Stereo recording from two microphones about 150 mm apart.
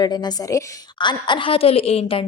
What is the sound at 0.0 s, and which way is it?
A woman's voice, 30° left (ahead or behind).